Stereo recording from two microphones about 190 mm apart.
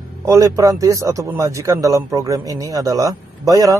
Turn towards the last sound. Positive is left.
turn(degrees=-20)  # may be behind; listen again after turning